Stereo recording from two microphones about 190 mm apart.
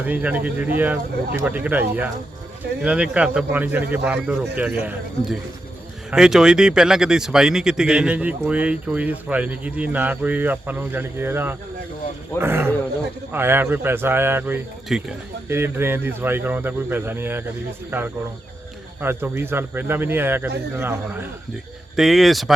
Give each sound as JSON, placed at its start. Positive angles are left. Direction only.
{"t": 0.0, "sound": "speech", "side_deg": -10}
{"t": 2.8, "sound": "speech", "side_deg": -5}
{"t": 15.4, "sound": "speech", "side_deg": -10}
{"t": 19.0, "sound": "speech", "side_deg": -10}
{"t": 21.9, "sound": "speech", "side_deg": 0}